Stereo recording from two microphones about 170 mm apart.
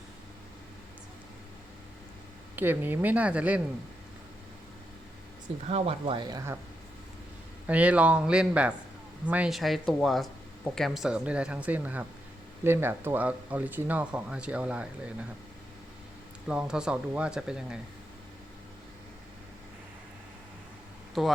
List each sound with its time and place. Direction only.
2.6 s speech: 10° right (ahead or behind)
5.6 s speech: 35° right (ahead or behind); by 6.6 s 20° right (ahead or behind)
7.7 s speech: 10° right (ahead or behind)
16.5 s speech: 5° right (ahead or behind)
21.2 s speech: centre (ahead or behind)